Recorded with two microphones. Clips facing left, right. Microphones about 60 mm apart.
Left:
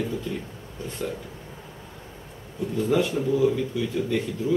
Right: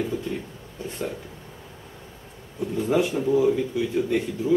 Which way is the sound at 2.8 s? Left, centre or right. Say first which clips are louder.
Even; centre.